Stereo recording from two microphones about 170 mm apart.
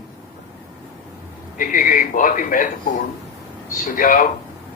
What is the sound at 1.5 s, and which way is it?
A man's voice, 55° left (ahead or behind).